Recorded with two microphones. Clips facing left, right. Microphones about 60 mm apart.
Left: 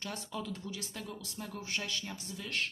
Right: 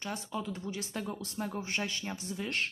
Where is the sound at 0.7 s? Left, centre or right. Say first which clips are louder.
Right 5 dB; right.